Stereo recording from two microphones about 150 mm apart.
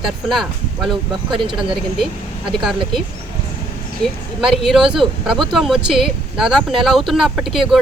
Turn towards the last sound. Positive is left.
turn(degrees=-5)  # may be behind; listen again after turning